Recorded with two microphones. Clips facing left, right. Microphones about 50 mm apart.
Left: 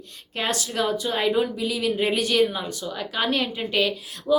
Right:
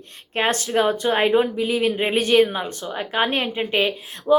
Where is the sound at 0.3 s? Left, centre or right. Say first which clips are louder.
Right 6 dB; right.